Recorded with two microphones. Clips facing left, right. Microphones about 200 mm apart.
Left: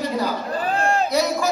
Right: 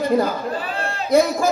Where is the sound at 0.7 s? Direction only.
45° left (ahead or behind).